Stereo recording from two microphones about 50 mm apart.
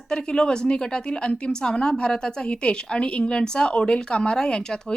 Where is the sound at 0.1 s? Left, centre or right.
Centre.